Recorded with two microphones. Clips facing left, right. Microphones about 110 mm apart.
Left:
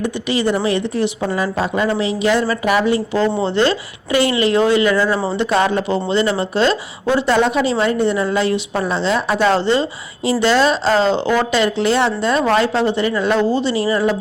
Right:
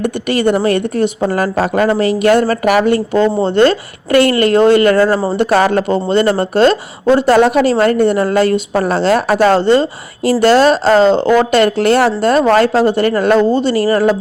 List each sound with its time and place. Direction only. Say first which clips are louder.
0.0 s a woman's voice: right 4 dB; 60° right (ahead or behind)
1.3 s a woman's voice: right 5 dB; 65° right (ahead or behind)
2.6 s a woman's voice: right 4 dB; 65° right (ahead or behind)
5.4 s speech: right 5 dB; 70° right (ahead or behind)
5.9 s speech: right 5 dB; 45° right (ahead or behind)
9.4 s speech: right 4 dB; 45° right (ahead or behind)